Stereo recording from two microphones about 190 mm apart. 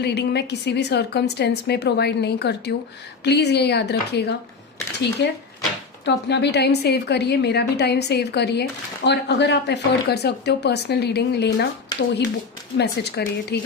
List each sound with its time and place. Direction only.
0.0 s a woman's voice: 60° left (ahead or behind)
12.7 s a woman's voice: 60° left (ahead or behind)